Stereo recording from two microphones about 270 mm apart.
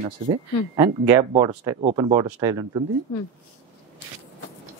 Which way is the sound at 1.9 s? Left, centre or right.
Centre.